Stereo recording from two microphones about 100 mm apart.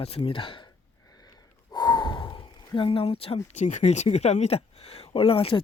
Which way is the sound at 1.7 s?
45° left (ahead or behind).